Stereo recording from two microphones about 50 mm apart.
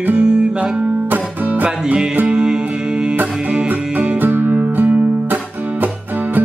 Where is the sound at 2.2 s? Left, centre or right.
Centre.